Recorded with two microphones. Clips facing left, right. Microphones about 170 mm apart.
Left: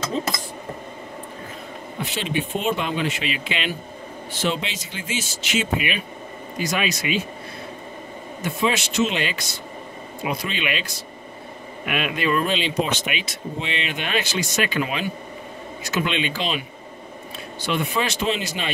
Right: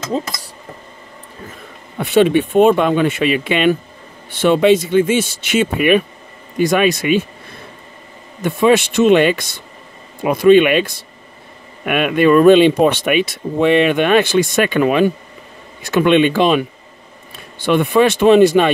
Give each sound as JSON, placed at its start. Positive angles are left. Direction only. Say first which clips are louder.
{"t": 2.0, "sound": "speech", "louder": "right 14 dB", "side_deg": -60}
{"t": 8.5, "sound": "speech", "louder": "right 11 dB", "side_deg": -55}
{"t": 17.6, "sound": "speech", "louder": "right 12 dB", "side_deg": -55}